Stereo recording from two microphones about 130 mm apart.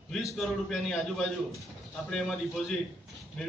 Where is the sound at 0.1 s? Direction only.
Centre (ahead or behind).